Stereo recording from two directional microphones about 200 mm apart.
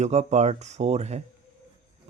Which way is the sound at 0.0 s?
35° right (ahead or behind).